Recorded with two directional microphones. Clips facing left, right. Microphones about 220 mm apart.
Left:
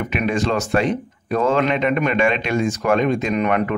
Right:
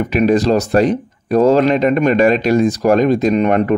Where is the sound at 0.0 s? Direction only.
35° right (ahead or behind).